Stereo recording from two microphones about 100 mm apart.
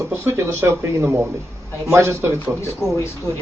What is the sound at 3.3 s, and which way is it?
Speech, 30° left (ahead or behind).